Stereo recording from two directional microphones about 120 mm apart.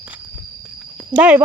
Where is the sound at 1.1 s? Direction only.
10° right (ahead or behind).